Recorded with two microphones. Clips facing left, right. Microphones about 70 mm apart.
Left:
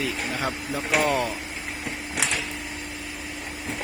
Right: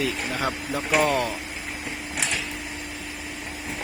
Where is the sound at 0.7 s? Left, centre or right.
Centre.